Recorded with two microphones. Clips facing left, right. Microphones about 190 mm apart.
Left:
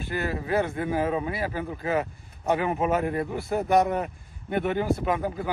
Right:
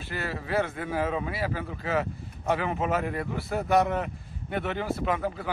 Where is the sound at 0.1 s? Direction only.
15° left (ahead or behind).